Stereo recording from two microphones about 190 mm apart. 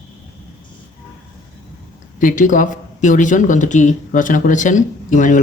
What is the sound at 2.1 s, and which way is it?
Speech, 45° left (ahead or behind).